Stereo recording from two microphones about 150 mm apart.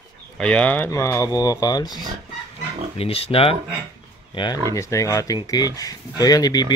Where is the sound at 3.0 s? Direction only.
40° left (ahead or behind).